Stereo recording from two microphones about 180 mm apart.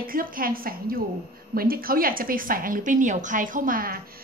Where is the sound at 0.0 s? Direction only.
50° right (ahead or behind).